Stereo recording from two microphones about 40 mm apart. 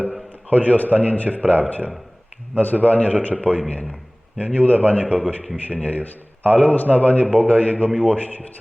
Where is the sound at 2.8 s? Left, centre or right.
Left.